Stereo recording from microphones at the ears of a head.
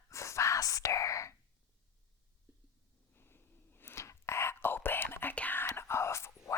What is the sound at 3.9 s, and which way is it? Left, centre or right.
Whispering, left.